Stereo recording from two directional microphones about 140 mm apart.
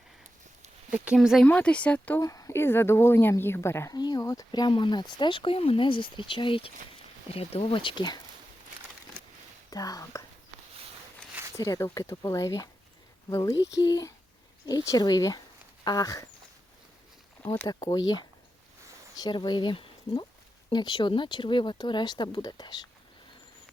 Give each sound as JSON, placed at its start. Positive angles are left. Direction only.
{"t": 0.9, "sound": "speech", "side_deg": -10}
{"t": 1.5, "sound": "speech", "side_deg": 10}
{"t": 2.2, "sound": "a woman's voice", "side_deg": 25}
{"t": 9.6, "sound": "speech", "side_deg": 25}
{"t": 11.5, "sound": "a woman's voice", "side_deg": 20}
{"t": 15.8, "sound": "a sound", "side_deg": 25}
{"t": 17.5, "sound": "a woman's voice", "side_deg": 25}